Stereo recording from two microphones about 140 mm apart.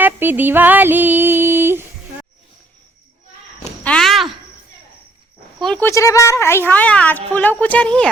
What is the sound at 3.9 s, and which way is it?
Walk, 5° left (ahead or behind).